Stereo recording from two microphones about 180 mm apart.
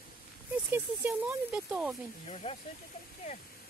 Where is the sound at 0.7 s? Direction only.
10° right (ahead or behind).